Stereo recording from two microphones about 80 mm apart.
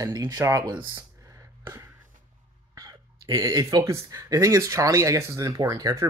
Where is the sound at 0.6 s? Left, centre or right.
Right.